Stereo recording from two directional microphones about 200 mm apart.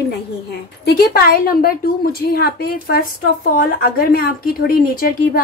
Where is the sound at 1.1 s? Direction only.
50° left (ahead or behind).